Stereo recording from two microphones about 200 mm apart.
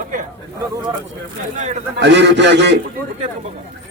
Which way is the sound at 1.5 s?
35° right (ahead or behind).